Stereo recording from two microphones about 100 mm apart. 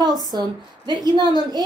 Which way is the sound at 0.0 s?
45° right (ahead or behind).